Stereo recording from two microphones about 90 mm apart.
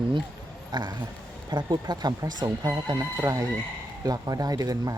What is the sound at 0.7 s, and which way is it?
Speech, 50° right (ahead or behind).